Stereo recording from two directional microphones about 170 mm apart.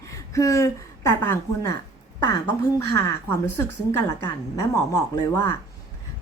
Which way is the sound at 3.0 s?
15° left (ahead or behind).